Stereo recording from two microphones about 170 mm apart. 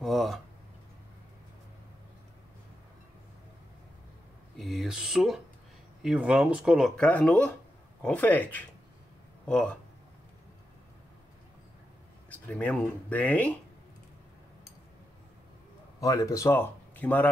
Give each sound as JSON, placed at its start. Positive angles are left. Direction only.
{"t": 0.0, "sound": "speech", "side_deg": 0}
{"t": 4.6, "sound": "speech", "side_deg": 0}
{"t": 12.3, "sound": "speech", "side_deg": 10}
{"t": 16.0, "sound": "speech", "side_deg": 20}